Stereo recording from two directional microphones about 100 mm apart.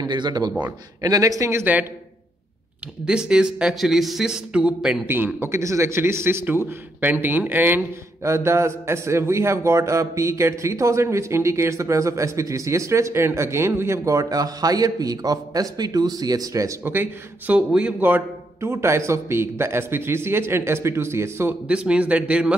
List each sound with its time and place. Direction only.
0.0 s speech: 45° right (ahead or behind); by 1.9 s 20° right (ahead or behind)
3.1 s speech: 10° right (ahead or behind)
5.0 s a man's voice: 20° right (ahead or behind)
21.6 s speech: 10° right (ahead or behind)